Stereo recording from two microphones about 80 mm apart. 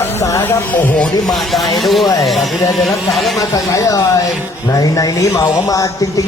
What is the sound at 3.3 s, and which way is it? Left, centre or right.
Speech, left.